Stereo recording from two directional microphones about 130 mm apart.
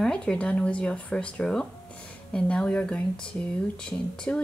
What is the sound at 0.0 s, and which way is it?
Speech, 5° left (ahead or behind).